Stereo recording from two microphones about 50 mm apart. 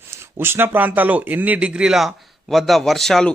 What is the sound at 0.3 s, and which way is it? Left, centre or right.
Speech, right.